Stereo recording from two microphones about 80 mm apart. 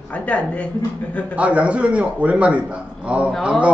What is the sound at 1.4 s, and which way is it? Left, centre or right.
Speech, centre.